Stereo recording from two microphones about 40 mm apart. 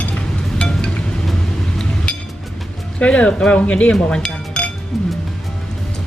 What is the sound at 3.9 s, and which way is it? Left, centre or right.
Dishes, left.